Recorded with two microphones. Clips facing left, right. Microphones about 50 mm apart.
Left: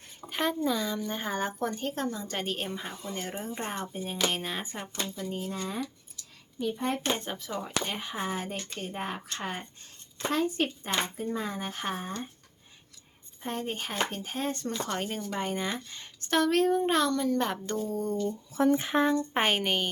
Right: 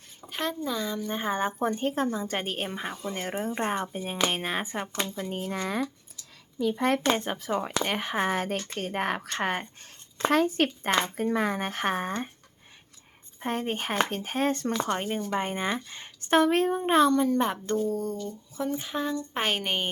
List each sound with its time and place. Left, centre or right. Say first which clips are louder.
0.3 s speech: left 2 dB; centre; by 3.2 s right
3.2 s speech: right 6 dB; right
5.1 s speech: right 2 dB; right
5.5 s speech: right 4 dB; right
7.3 s speech: right 6 dB; right
7.9 s speech: right 6 dB; right
13.4 s speech: right 4 dB; right
14.8 s speech: right 4 dB; centre
18.5 s speech: left 6 dB; left
18.9 s speech: left 5 dB; left
19.3 s speech: left 2 dB; centre